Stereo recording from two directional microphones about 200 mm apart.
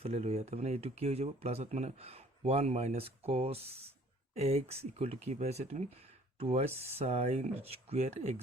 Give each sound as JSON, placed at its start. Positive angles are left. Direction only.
{"t": 0.0, "sound": "speech", "side_deg": -30}